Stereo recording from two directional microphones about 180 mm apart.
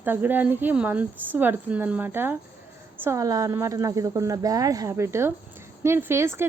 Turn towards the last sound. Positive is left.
turn(degrees=-15)  # may be behind; listen again after turning